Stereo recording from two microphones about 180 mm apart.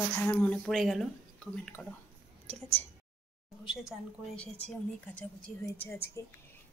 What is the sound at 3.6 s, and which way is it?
A woman's voice, centre (ahead or behind).